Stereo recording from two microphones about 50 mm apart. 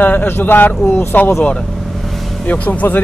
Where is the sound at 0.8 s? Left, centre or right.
Left.